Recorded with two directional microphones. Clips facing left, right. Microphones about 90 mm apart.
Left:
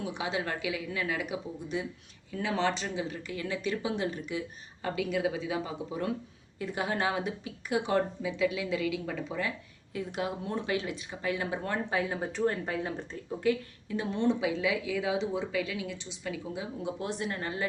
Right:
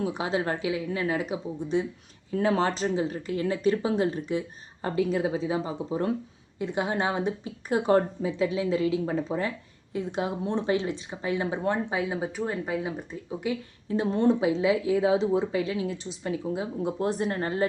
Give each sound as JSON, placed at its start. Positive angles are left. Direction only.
{"t": 0.0, "sound": "speech", "side_deg": -35}
{"t": 13.8, "sound": "speech", "side_deg": -30}